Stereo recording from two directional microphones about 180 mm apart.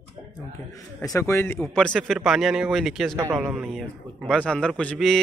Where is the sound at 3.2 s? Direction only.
15° right (ahead or behind).